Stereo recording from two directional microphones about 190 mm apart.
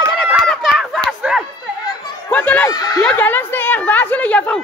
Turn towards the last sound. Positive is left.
turn(degrees=5)  # may be behind; listen again after turning